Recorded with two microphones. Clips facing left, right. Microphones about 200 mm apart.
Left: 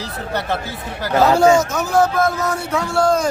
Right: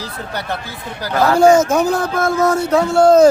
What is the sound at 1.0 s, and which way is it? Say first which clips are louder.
Speech: left 1 dB; 25° left (ahead or behind).